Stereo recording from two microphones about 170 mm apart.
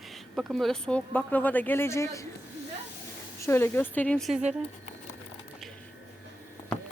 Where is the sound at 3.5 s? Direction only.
15° left (ahead or behind).